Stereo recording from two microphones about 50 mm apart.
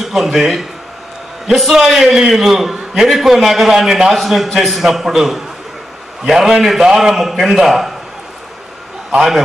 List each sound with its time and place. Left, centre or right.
0.0 s a man's voice: centre
1.7 s a man's voice: centre